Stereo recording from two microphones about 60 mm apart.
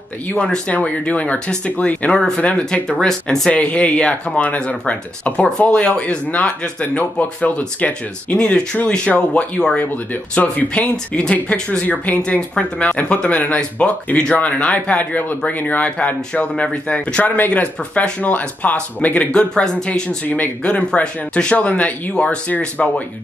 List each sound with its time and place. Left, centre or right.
0.5 s speech: left
11.8 s speech: left
12.3 s speech: centre